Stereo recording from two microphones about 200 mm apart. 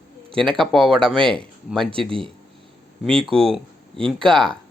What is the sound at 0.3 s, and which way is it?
Speech, centre (ahead or behind).